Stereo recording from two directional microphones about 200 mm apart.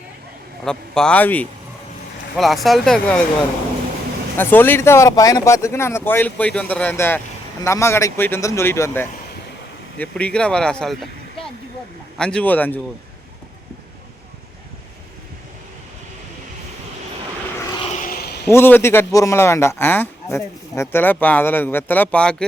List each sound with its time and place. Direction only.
0.6 s speech: 5° left (ahead or behind)
4.4 s speech: 10° left (ahead or behind)
17.9 s a sound: 45° left (ahead or behind)
18.4 s speech: 10° left (ahead or behind)